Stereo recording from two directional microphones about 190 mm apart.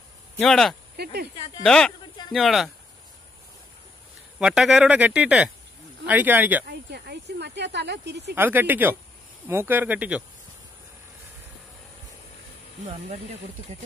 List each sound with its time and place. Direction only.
0.4 s speech: centre (ahead or behind)
0.9 s speech: 55° right (ahead or behind)
1.6 s speech: 5° left (ahead or behind)
4.4 s speech: 5° right (ahead or behind)
6.9 s speech: 60° right (ahead or behind)
8.4 s speech: 10° right (ahead or behind)
12.8 s speech: 25° right (ahead or behind)